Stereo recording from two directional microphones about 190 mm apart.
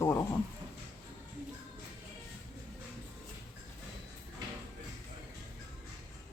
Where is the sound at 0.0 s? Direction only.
15° left (ahead or behind).